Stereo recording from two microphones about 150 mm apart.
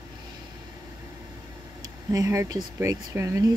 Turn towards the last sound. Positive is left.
turn(degrees=-20)  # may be behind; listen again after turning